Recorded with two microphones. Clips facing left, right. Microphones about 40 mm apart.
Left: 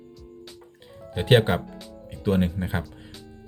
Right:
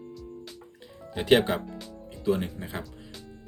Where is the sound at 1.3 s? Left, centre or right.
Left.